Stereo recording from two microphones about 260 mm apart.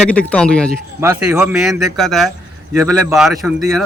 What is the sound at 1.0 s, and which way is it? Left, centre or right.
A man's voice, centre.